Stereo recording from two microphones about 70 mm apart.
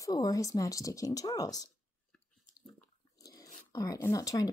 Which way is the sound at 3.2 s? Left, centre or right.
Left.